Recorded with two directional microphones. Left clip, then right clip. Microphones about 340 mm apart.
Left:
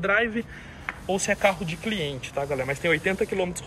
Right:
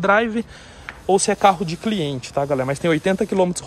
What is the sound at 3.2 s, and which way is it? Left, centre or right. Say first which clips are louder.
Speech: right 8 dB; right.